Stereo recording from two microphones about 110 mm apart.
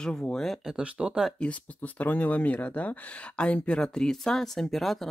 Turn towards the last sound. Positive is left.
turn(degrees=0)  # may be behind; listen again after turning